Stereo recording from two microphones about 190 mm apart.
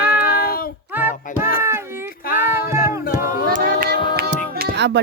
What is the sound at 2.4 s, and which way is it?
Music, 50° left (ahead or behind).